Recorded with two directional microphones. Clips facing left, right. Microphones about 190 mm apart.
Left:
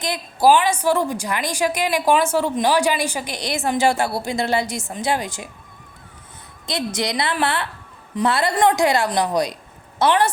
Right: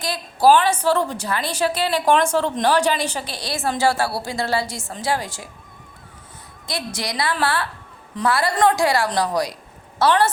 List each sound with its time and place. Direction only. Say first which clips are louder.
0.0 s a woman's voice: even; 15° left (ahead or behind)
6.7 s a woman's voice: left 4 dB; 20° left (ahead or behind)